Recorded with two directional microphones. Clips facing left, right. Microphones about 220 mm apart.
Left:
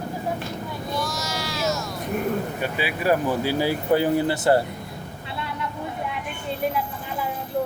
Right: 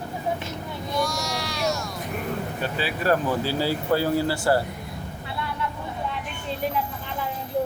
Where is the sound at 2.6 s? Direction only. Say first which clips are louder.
Even; 15° left (ahead or behind).